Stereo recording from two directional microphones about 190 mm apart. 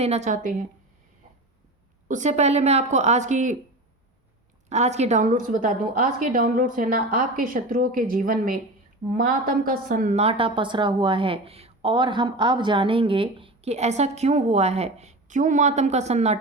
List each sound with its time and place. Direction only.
0.0 s speech: 35° right (ahead or behind)
2.0 s speech: 40° right (ahead or behind)
4.7 s a woman's voice: 35° right (ahead or behind)
10.2 s speech: 30° right (ahead or behind)